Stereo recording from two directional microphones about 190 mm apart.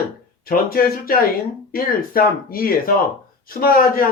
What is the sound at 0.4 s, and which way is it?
Speech, 50° left (ahead or behind).